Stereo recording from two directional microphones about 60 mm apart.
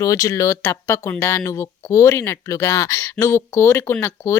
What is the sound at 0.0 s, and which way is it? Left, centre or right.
Speech, left.